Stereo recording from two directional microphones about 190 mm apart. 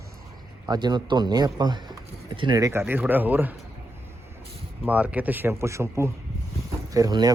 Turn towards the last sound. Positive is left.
turn(degrees=-20)  # may be behind; listen again after turning